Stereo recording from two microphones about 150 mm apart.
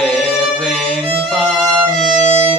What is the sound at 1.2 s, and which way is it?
Violin, centre (ahead or behind).